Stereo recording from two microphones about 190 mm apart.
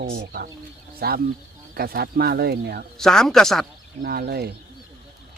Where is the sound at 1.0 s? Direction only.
55° right (ahead or behind).